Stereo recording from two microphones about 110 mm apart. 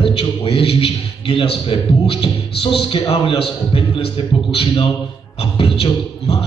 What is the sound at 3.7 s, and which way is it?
Speech, 55° left (ahead or behind).